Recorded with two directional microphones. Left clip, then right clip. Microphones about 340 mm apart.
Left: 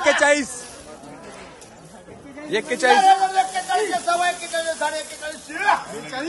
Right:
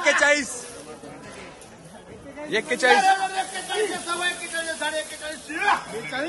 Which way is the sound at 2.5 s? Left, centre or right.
Centre.